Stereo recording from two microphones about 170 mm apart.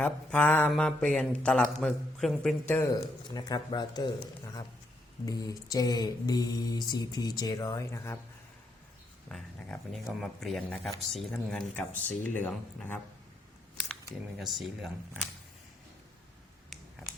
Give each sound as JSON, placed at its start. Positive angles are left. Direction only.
{"t": 0.0, "sound": "mantra", "side_deg": 5}
{"t": 0.7, "sound": "speech", "side_deg": 5}
{"t": 3.0, "sound": "mantra", "side_deg": 25}
{"t": 5.2, "sound": "mantra", "side_deg": 20}
{"t": 9.3, "sound": "speech", "side_deg": 0}
{"t": 14.3, "sound": "speech", "side_deg": 0}